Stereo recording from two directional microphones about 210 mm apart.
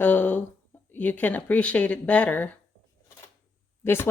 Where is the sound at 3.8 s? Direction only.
10° left (ahead or behind).